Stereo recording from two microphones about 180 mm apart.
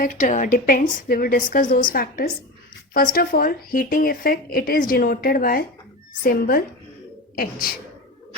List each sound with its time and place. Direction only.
0.0 s a woman's voice: 45° left (ahead or behind)